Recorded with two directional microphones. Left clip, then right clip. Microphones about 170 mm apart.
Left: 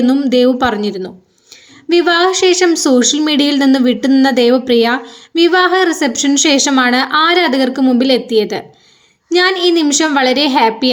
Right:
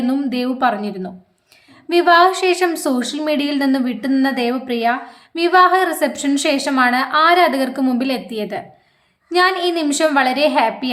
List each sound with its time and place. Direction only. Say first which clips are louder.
0.0 s speech: left 9 dB; 20° left (ahead or behind)
5.3 s a woman's voice: left 2 dB; 15° left (ahead or behind)